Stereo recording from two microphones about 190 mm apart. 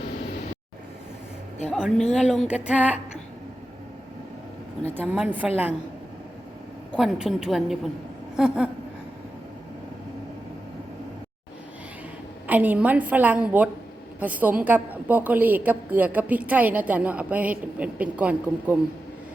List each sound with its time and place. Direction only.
1.7 s a woman's voice: centre (ahead or behind)
4.9 s a woman's voice: 5° right (ahead or behind)
6.9 s a woman's voice: 5° right (ahead or behind)
12.5 s a woman's voice: 10° right (ahead or behind)